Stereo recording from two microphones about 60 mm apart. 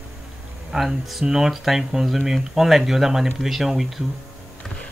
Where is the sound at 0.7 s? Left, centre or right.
Centre.